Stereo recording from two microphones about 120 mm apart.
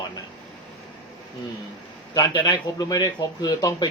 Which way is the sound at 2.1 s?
35° left (ahead or behind).